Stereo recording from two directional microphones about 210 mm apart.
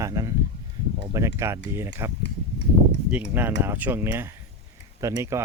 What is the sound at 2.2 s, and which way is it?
Horse, 55° left (ahead or behind).